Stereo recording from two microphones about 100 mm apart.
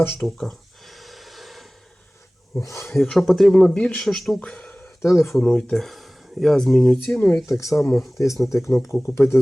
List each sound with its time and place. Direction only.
0.2 s gasp: 5° left (ahead or behind)
2.6 s speech: 30° left (ahead or behind)
2.9 s speech: 5° left (ahead or behind)
5.0 s speech: 30° left (ahead or behind)
5.4 s speech: 10° left (ahead or behind)
7.6 s speech: 30° left (ahead or behind)
7.9 s speech: centre (ahead or behind)
8.5 s speech: 30° left (ahead or behind)